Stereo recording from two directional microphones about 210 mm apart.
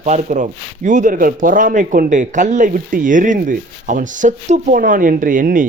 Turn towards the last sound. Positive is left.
turn(degrees=-40)  # may be behind; listen again after turning